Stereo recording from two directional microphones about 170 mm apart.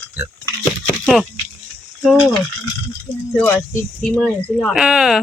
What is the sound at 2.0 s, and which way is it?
Speech, 5° right (ahead or behind).